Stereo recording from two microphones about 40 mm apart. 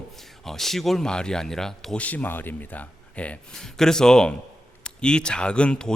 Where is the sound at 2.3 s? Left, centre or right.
Left.